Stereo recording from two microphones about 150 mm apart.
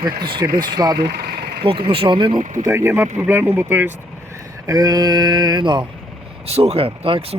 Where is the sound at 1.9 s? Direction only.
35° right (ahead or behind).